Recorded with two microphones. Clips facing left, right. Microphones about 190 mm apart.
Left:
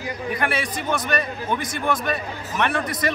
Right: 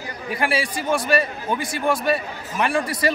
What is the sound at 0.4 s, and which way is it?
Speech, 30° right (ahead or behind).